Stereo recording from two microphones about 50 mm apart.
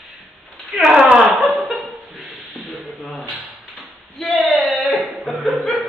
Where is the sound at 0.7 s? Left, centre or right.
Centre.